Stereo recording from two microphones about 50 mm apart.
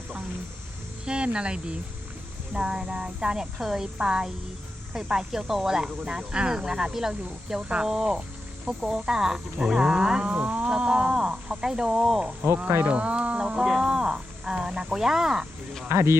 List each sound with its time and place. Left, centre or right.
1.0 s speech: centre
12.4 s speech: right
12.8 s speech: right
13.7 s speech: centre
15.9 s speech: right